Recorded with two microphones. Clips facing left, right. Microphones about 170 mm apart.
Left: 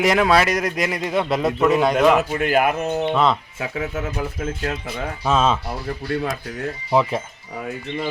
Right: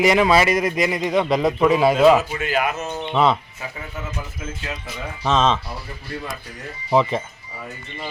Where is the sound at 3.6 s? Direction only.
75° left (ahead or behind).